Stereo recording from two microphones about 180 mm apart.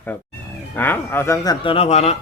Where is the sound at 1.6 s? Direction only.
35° left (ahead or behind).